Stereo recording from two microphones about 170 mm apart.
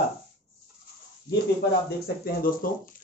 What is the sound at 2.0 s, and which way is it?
Speech, 60° left (ahead or behind).